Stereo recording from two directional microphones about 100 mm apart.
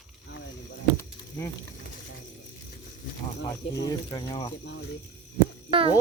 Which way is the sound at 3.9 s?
45° left (ahead or behind).